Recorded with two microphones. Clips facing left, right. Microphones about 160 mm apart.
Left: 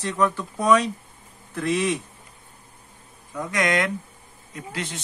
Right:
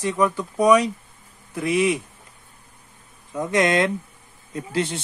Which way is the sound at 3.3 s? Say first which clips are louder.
Right 4 dB; 25° right (ahead or behind).